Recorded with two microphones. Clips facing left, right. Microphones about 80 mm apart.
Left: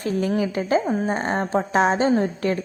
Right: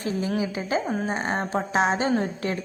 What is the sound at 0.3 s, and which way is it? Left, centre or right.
Speech, left.